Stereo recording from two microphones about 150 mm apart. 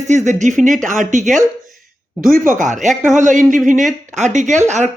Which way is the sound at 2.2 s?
65° right (ahead or behind).